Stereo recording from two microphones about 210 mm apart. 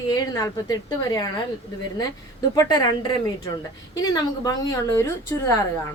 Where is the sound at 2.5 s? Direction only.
20° left (ahead or behind).